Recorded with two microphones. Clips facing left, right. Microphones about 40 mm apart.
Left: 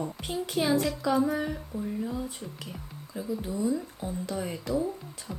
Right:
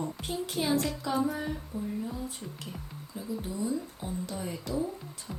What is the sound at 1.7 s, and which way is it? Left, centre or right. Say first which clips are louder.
Speech: left 2 dB; left.